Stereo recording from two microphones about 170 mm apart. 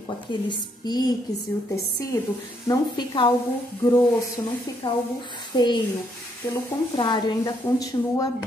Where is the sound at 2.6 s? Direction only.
25° left (ahead or behind).